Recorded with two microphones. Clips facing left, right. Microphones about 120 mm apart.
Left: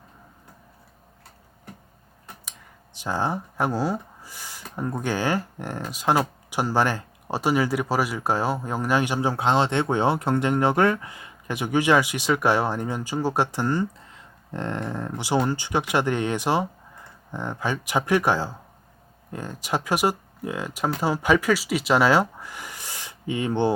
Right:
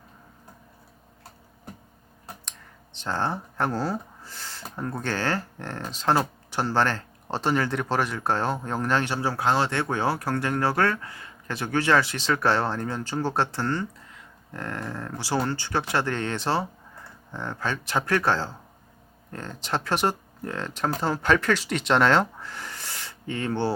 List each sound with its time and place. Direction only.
2.4 s speech: 10° left (ahead or behind)